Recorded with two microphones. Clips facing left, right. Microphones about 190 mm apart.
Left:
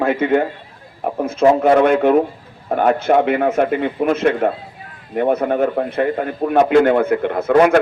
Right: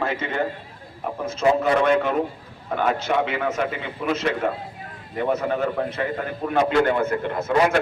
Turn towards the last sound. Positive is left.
turn(degrees=55)  # may be behind; listen again after turning